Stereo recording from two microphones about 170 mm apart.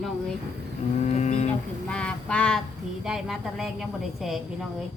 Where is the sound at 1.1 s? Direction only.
40° left (ahead or behind).